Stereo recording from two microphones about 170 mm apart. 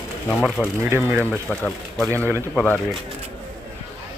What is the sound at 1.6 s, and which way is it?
Speech, 5° left (ahead or behind).